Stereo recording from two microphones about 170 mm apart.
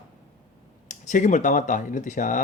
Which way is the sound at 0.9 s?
45° left (ahead or behind).